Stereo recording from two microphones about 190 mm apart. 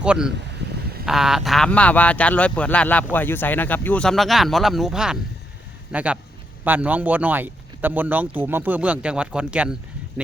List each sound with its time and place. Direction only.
0.0 s speech: 5° right (ahead or behind)
0.6 s a sound: 65° right (ahead or behind)
1.0 s speech: centre (ahead or behind)